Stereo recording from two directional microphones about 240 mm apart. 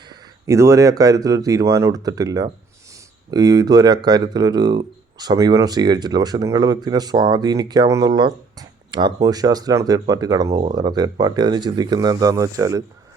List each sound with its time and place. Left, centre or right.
0.4 s speech: centre